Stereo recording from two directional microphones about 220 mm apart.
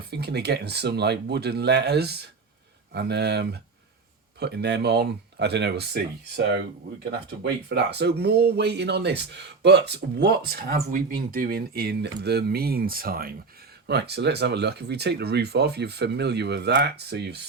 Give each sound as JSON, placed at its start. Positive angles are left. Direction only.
{"t": 0.1, "sound": "speech", "side_deg": -50}